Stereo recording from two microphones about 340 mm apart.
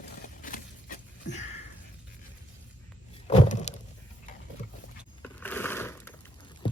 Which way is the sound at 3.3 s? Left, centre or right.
Centre.